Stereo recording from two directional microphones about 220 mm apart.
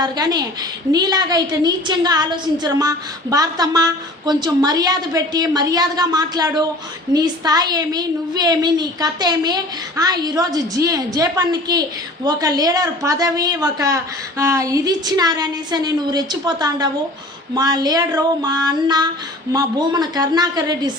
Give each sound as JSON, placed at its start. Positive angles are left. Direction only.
{"t": 0.0, "sound": "a woman's voice", "side_deg": -20}